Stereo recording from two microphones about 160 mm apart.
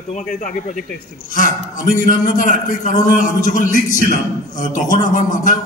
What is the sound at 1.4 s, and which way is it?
A man's voice, 55° left (ahead or behind).